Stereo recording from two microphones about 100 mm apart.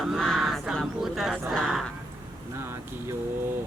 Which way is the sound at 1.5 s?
Centre (ahead or behind).